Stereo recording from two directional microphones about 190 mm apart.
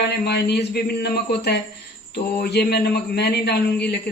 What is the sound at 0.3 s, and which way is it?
A man's voice, 60° left (ahead or behind).